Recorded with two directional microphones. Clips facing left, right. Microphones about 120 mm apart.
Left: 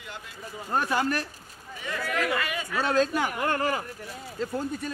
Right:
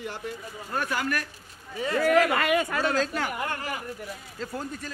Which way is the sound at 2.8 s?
25° left (ahead or behind).